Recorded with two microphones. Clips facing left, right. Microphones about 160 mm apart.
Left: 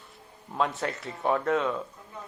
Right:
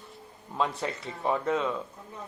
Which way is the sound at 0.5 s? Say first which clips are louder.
Left 1 dB; centre (ahead or behind).